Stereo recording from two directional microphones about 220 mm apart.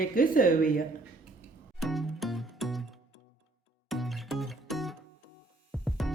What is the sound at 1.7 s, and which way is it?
Music, centre (ahead or behind).